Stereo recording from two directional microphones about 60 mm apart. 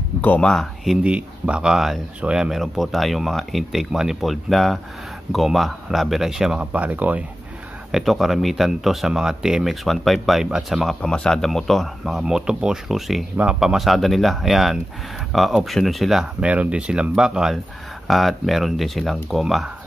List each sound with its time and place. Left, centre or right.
0.4 s speech: centre
1.0 s speech: centre
2.6 s speech: centre
6.6 s speech: right
7.9 s speech: centre
11.0 s speech: centre
16.3 s speech: centre
18.0 s speech: centre